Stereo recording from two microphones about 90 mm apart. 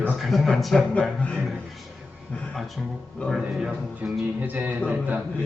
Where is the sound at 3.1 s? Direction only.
5° left (ahead or behind).